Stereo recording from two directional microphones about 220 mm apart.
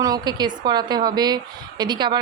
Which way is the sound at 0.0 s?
15° right (ahead or behind).